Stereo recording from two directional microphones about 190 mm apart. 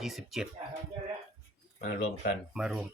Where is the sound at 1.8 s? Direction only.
55° left (ahead or behind).